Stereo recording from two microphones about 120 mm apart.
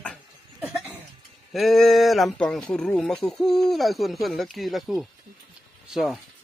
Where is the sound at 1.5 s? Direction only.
Centre (ahead or behind).